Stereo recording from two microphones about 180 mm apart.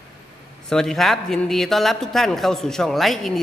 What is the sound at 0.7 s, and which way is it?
A man's voice, 5° left (ahead or behind).